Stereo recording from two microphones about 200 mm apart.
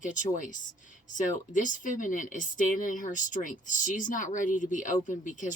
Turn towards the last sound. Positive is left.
turn(degrees=40)  # may be behind; listen again after turning